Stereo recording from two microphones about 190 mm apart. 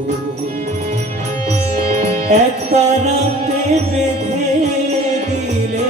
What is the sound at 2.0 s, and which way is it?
Music, 35° right (ahead or behind).